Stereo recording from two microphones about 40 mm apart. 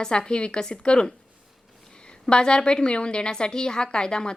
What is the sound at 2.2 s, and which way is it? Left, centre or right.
A woman's voice, left.